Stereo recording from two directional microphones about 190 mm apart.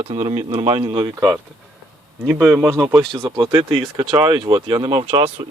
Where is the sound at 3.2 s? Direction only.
20° right (ahead or behind).